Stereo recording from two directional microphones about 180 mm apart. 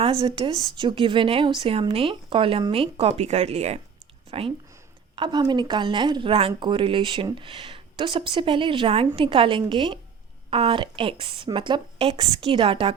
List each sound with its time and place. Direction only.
0.0 s speech: 35° right (ahead or behind)